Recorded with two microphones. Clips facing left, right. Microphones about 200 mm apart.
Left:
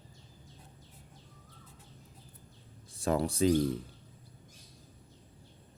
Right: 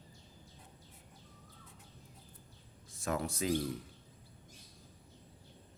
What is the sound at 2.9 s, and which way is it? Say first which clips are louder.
Speech: left 6 dB; 30° left (ahead or behind).